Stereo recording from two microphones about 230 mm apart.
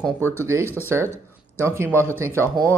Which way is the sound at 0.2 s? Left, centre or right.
Centre.